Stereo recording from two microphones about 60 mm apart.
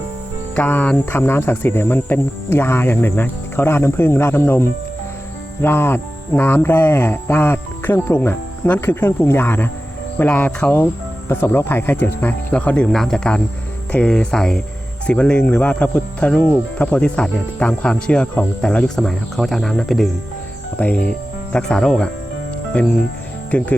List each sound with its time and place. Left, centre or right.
0.5 s speech: left
10.2 s speech: left
11.3 s speech: left
12.9 s speech: centre
18.9 s speech: centre
20.7 s speech: left
23.5 s speech: left